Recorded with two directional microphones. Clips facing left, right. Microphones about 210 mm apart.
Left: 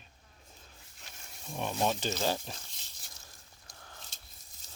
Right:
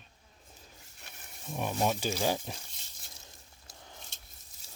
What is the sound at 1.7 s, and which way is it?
Speech, 5° right (ahead or behind).